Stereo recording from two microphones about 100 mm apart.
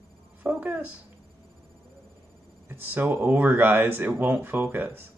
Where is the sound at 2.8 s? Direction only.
20° right (ahead or behind).